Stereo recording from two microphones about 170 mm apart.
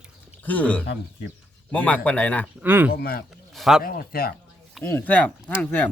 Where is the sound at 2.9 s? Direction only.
60° left (ahead or behind).